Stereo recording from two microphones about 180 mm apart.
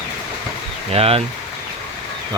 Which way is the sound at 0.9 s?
35° right (ahead or behind).